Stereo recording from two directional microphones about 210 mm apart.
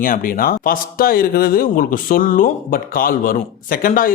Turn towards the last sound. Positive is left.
turn(degrees=40)  # may be behind; listen again after turning